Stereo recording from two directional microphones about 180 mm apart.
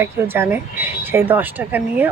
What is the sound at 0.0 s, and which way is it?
Speech, 15° right (ahead or behind).